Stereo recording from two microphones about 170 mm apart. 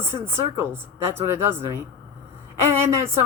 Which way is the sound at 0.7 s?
15° right (ahead or behind).